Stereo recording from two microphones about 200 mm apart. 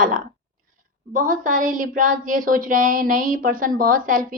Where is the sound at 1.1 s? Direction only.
40° right (ahead or behind).